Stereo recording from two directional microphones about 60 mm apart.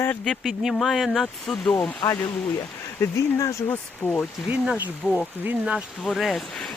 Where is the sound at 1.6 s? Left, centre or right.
Left.